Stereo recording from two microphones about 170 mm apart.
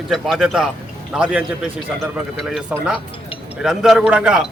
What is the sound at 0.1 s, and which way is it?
Speech, centre (ahead or behind).